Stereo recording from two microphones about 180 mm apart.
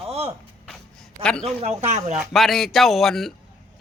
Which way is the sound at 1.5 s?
35° right (ahead or behind).